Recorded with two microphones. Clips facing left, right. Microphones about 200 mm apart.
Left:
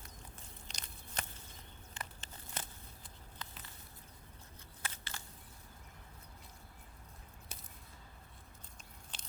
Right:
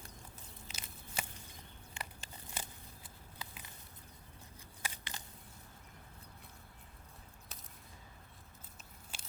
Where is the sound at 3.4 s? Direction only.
10° right (ahead or behind).